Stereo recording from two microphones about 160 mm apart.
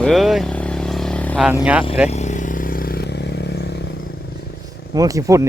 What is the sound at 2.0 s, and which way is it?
Vehicle, 45° left (ahead or behind).